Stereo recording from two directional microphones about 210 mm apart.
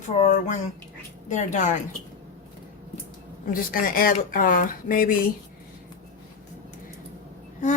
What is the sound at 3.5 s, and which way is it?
Speech, 40° left (ahead or behind).